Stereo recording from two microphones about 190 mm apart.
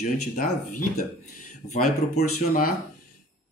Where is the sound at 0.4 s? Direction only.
45° left (ahead or behind).